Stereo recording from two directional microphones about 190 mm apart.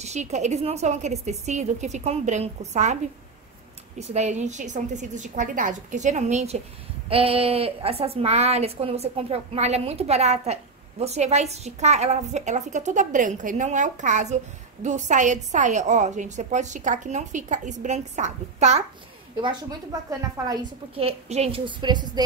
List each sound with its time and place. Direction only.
0.0 s a woman's voice: 35° right (ahead or behind)
4.0 s a woman's voice: 35° right (ahead or behind)
19.4 s a woman's voice: 20° right (ahead or behind)
21.0 s a woman's voice: 30° right (ahead or behind)